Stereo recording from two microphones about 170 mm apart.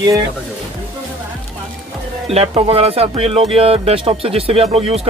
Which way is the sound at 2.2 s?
35° right (ahead or behind).